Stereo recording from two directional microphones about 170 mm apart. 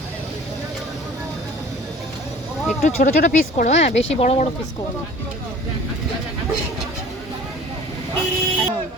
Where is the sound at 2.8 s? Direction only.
45° left (ahead or behind).